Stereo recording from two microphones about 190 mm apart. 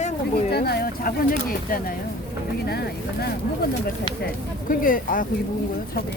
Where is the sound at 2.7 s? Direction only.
55° left (ahead or behind).